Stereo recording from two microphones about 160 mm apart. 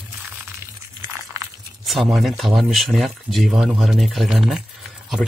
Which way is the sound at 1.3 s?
20° right (ahead or behind).